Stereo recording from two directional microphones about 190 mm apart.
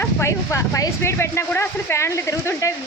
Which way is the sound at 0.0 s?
15° left (ahead or behind).